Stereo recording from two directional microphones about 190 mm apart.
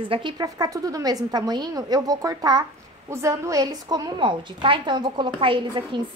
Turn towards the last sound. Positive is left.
turn(degrees=-25)  # may be behind; listen again after turning